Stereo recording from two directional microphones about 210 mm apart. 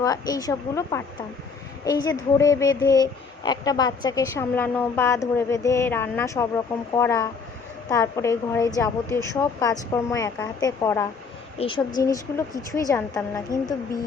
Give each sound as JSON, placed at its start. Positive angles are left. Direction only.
{"t": 0.0, "sound": "speech", "side_deg": 15}
{"t": 11.5, "sound": "speech", "side_deg": 25}